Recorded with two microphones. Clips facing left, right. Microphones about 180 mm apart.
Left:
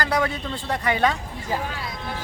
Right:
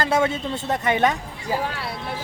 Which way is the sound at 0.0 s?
25° right (ahead or behind).